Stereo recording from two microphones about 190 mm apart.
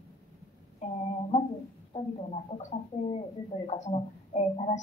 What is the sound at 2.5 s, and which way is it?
Speech, 30° left (ahead or behind).